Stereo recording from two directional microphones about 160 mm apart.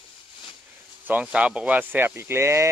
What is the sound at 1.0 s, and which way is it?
Speech, 10° right (ahead or behind).